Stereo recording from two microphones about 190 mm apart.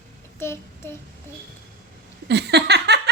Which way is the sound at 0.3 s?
15° left (ahead or behind).